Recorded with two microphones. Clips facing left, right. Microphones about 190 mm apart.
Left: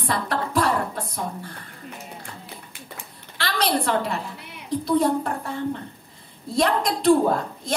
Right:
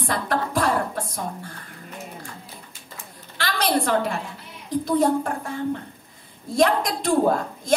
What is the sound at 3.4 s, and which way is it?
Speech, 50° right (ahead or behind).